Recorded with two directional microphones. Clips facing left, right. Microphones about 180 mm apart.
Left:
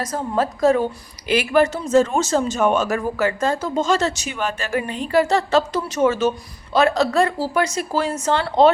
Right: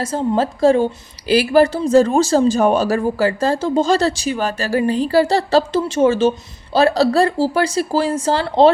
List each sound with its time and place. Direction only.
0.0 s a woman's voice: 30° right (ahead or behind)